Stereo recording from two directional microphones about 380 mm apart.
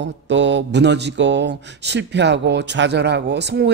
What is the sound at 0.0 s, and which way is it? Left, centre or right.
A man's voice, right.